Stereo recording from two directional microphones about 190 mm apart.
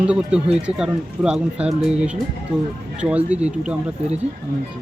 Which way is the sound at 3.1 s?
5° right (ahead or behind).